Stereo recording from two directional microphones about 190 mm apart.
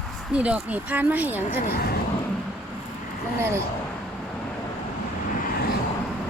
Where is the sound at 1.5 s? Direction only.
55° left (ahead or behind).